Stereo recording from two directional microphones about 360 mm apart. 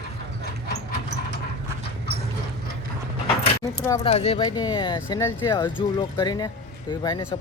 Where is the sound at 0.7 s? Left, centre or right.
Left.